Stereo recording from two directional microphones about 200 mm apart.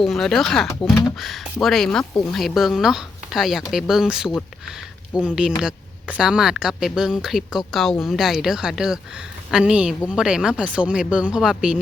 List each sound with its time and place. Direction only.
0.0 s speech: centre (ahead or behind)